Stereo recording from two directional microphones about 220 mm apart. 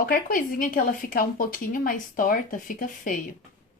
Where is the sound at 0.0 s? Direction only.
40° left (ahead or behind).